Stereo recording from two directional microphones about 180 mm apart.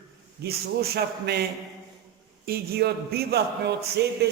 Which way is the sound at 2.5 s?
60° right (ahead or behind).